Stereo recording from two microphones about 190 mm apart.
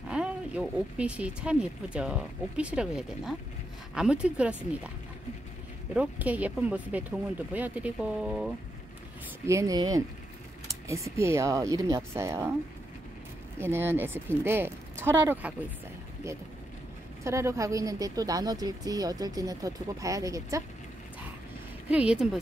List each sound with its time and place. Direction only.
0.1 s speech: 5° right (ahead or behind)
5.9 s speech: 10° right (ahead or behind)
9.5 s speech: 15° right (ahead or behind)
13.6 s speech: 10° right (ahead or behind)
17.2 s speech: 15° right (ahead or behind)
21.9 s speech: 5° right (ahead or behind)